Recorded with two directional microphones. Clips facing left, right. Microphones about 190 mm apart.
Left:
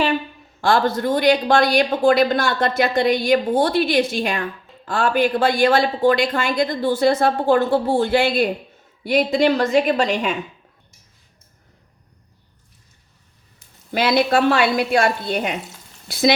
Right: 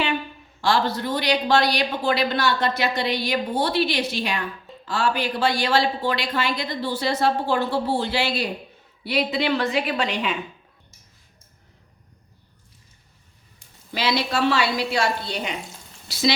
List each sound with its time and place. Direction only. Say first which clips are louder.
0.6 s speech: left 4 dB; 50° left (ahead or behind)
13.9 s speech: left 7 dB; 50° left (ahead or behind)